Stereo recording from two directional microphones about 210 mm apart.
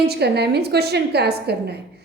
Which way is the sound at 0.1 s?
50° right (ahead or behind).